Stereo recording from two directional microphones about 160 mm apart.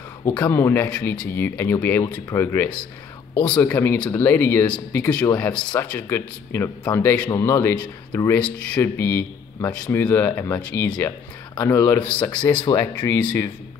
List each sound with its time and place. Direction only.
0.4 s speech: 15° left (ahead or behind)
12.5 s speech: 30° left (ahead or behind)
12.9 s speech: 10° left (ahead or behind)